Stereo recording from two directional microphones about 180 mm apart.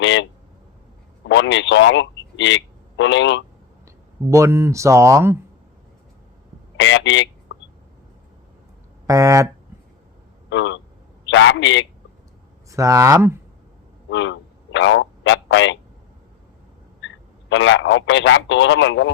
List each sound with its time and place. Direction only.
0.0 s speech: 90° left
1.3 s a man's voice: 90° left
4.3 s speech: 15° right (ahead or behind)
6.7 s speech: 90° left
9.0 s speech: 20° right (ahead or behind)
10.5 s a man's voice: 90° left
12.7 s speech: 20° right (ahead or behind)
14.1 s a sound: 90° left
17.5 s a man's voice: 90° left